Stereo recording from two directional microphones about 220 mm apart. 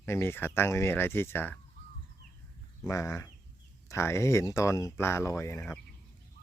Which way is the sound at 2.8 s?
15° left (ahead or behind).